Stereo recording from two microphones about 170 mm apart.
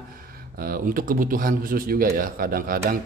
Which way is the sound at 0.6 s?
60° right (ahead or behind).